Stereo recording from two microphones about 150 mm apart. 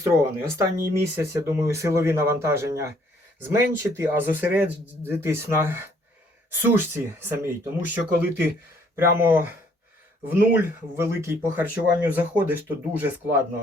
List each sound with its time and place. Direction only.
0.0 s speech: 15° right (ahead or behind)